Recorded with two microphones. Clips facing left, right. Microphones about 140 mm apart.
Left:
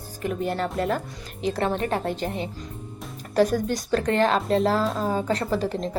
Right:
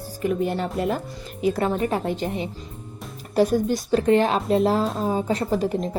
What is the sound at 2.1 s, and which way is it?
Speech, 40° left (ahead or behind).